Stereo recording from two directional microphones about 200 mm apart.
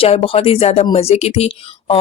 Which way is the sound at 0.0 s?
30° left (ahead or behind).